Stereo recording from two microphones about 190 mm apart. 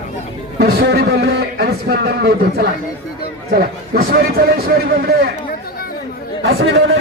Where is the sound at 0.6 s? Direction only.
55° right (ahead or behind).